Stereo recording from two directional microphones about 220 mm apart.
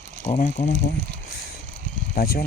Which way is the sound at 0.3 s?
35° left (ahead or behind).